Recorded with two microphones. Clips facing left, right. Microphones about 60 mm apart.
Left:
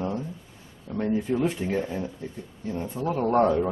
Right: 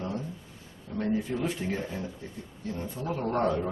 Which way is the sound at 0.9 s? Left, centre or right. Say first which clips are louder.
Left 3 dB; left.